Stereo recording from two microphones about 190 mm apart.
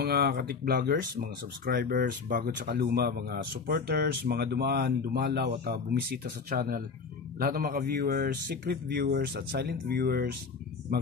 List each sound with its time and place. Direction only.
0.0 s speech: 55° right (ahead or behind)